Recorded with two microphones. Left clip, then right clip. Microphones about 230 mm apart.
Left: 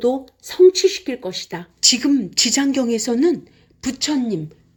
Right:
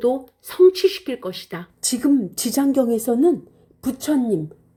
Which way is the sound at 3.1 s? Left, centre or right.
Left.